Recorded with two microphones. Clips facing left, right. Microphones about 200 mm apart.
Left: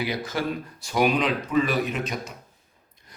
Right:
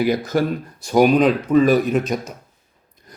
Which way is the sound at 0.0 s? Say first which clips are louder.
Right 9 dB; 45° right (ahead or behind).